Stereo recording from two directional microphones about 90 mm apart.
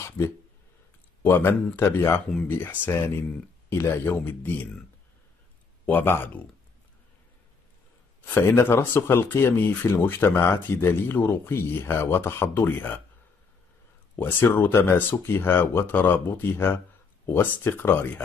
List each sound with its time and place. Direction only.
1.2 s speech: 25° left (ahead or behind)
5.9 s speech: 20° left (ahead or behind)
8.4 s speech: 30° left (ahead or behind)
14.1 s speech: 25° left (ahead or behind)